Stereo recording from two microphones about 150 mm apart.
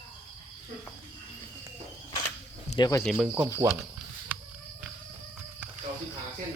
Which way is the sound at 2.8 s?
25° left (ahead or behind).